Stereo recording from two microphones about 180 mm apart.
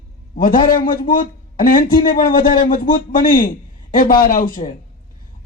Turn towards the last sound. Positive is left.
turn(degrees=50)  # may be behind; listen again after turning